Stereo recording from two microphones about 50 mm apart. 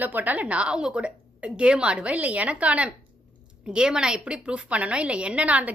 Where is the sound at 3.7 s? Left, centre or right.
Centre.